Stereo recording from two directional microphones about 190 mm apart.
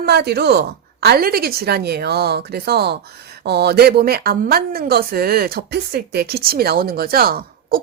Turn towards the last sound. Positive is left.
turn(degrees=-50)  # may be behind; listen again after turning